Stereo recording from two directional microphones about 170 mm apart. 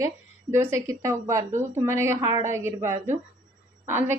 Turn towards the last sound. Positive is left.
turn(degrees=-15)  # may be behind; listen again after turning